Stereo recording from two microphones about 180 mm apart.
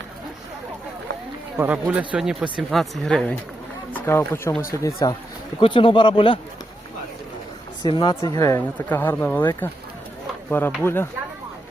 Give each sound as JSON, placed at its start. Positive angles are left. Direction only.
{"t": 1.5, "sound": "speech", "side_deg": -10}
{"t": 5.5, "sound": "a man's voice", "side_deg": 30}
{"t": 7.9, "sound": "speech", "side_deg": 25}
{"t": 10.8, "sound": "speech", "side_deg": 15}